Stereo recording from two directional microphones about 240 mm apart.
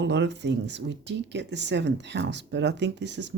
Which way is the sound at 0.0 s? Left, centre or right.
Right.